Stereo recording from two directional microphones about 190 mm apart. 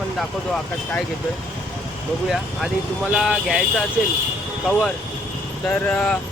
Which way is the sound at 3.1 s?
5° right (ahead or behind).